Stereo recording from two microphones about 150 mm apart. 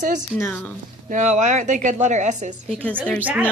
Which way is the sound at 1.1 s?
55° right (ahead or behind).